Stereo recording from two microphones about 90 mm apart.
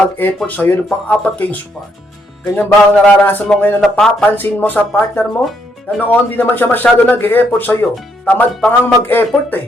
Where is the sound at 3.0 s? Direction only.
20° left (ahead or behind).